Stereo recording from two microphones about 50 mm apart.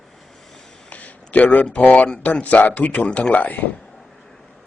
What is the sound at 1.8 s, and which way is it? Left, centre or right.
Speech, left.